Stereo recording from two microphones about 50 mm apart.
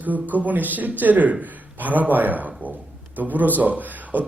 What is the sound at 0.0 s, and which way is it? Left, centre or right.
A man's voice, right.